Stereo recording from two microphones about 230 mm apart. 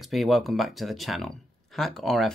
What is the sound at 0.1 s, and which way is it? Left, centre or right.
Speech, centre.